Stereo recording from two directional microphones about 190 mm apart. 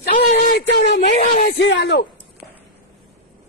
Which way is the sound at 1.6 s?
65° left (ahead or behind).